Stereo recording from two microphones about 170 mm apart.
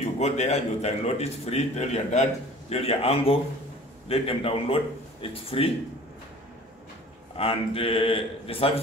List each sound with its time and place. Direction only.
0.2 s a man's voice: 40° left (ahead or behind)
7.3 s a man's voice: 35° left (ahead or behind)